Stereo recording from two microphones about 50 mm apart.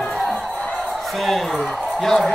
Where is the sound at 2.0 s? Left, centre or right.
Centre.